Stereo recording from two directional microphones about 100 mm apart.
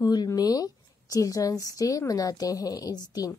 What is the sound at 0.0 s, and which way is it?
Speech, 40° left (ahead or behind).